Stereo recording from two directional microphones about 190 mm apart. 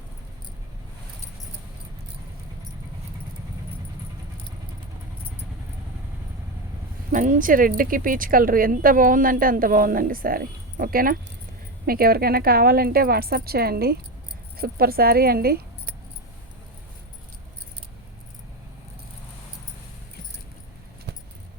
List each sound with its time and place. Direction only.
7.1 s speech: 45° right (ahead or behind)